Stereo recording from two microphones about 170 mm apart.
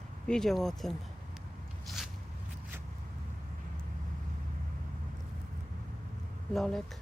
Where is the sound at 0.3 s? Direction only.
5° left (ahead or behind).